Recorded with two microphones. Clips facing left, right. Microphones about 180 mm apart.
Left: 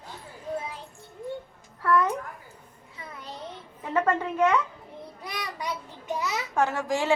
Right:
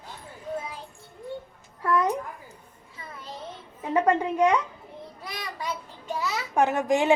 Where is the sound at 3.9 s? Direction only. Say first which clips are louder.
Right 2 dB; 15° right (ahead or behind).